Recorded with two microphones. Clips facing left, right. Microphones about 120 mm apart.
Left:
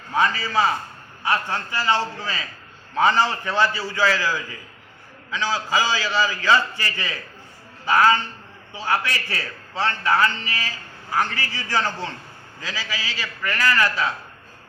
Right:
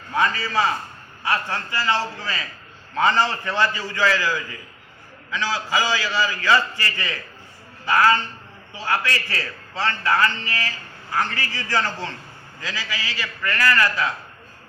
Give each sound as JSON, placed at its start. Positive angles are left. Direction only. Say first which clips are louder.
{"t": 0.1, "sound": "a man's voice", "louder": "left 1 dB", "side_deg": 15}